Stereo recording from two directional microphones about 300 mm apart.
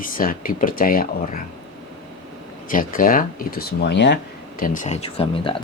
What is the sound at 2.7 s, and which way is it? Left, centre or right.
Speech, left.